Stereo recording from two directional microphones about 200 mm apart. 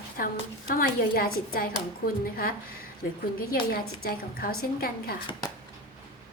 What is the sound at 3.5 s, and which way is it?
A woman's voice, 50° left (ahead or behind).